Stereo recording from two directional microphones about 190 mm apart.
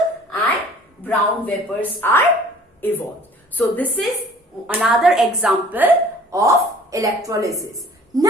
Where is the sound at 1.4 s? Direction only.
10° left (ahead or behind).